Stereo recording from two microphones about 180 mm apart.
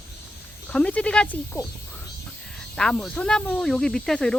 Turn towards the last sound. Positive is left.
turn(degrees=5)  # may be behind; listen again after turning